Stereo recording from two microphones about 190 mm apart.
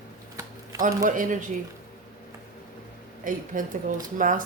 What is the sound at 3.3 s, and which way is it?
A man's voice, 45° right (ahead or behind).